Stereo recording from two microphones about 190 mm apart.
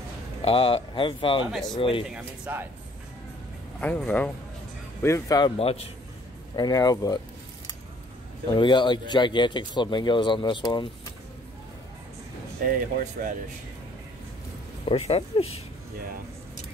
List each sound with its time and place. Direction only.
0.4 s speech: 30° left (ahead or behind)
2.0 s speech: 5° right (ahead or behind)
3.8 s speech: 10° left (ahead or behind)
5.6 s speech: 30° left (ahead or behind)
6.5 s speech: 20° left (ahead or behind)
8.5 s speech: 25° left (ahead or behind)
12.6 s speech: 45° right (ahead or behind)
14.9 s speech: 30° left (ahead or behind)